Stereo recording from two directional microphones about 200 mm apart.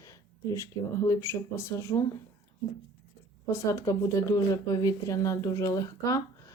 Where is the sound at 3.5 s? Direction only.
15° left (ahead or behind).